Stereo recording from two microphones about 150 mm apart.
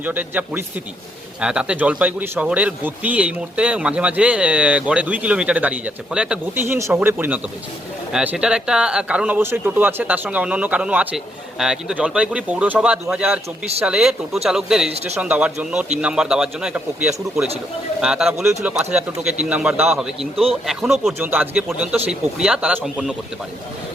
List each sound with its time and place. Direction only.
0.0 s speech: 10° right (ahead or behind)
6.7 s a man's voice: 20° right (ahead or behind); by 21.2 s centre (ahead or behind)
21.2 s a man's voice: 10° right (ahead or behind)